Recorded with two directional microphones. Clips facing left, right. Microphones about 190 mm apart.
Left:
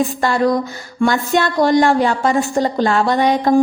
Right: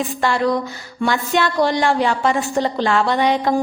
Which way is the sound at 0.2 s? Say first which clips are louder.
Even; 45° left (ahead or behind).